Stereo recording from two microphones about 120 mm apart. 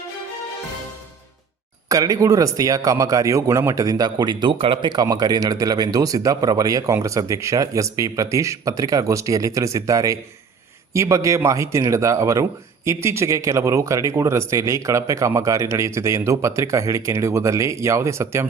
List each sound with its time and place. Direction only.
1.9 s a man's voice: 30° right (ahead or behind)